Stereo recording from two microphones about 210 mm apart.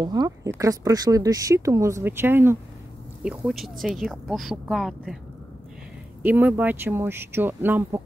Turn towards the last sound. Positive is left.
turn(degrees=-10)  # may be behind; listen again after turning